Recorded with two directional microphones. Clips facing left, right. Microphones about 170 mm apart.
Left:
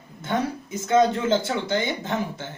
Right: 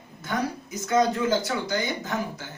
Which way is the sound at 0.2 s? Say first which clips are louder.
Left 3 dB; 25° left (ahead or behind).